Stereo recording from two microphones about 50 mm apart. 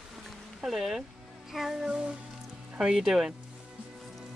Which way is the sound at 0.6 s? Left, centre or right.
Centre.